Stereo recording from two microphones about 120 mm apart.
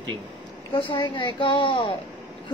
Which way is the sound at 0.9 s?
40° left (ahead or behind).